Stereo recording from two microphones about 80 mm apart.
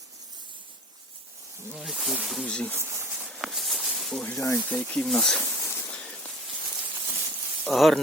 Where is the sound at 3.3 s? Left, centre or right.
Centre.